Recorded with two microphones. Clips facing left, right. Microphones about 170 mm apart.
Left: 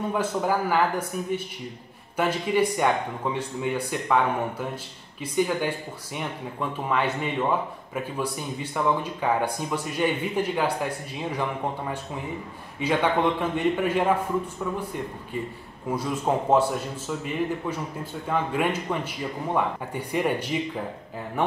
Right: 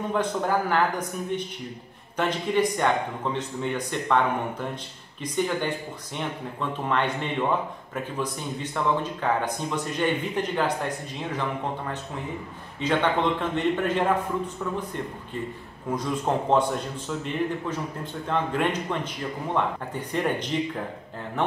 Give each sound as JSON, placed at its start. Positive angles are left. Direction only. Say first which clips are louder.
{"t": 0.1, "sound": "speech", "louder": "right 1 dB", "side_deg": 5}
{"t": 8.7, "sound": "speech", "louder": "left 1 dB", "side_deg": 10}
{"t": 12.8, "sound": "speech", "louder": "left 1 dB", "side_deg": 10}